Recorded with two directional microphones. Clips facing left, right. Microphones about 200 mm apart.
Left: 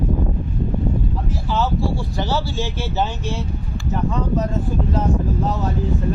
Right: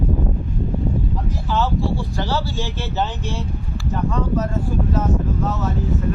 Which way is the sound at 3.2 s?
15° right (ahead or behind).